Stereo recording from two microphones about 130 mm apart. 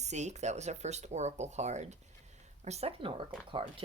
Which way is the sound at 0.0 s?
60° right (ahead or behind).